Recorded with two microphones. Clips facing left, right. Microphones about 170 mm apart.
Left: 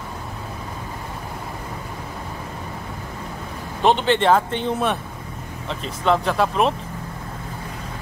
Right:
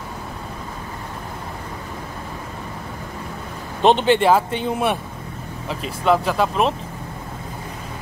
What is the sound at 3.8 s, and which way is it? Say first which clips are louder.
Speech: right 2 dB; 20° right (ahead or behind).